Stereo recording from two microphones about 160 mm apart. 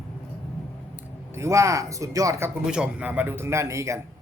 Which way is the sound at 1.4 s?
20° right (ahead or behind).